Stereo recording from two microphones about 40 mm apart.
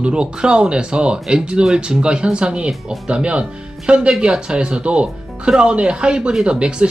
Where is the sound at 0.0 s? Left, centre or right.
Right.